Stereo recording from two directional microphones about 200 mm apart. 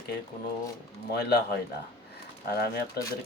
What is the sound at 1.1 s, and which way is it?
Speech, 55° left (ahead or behind).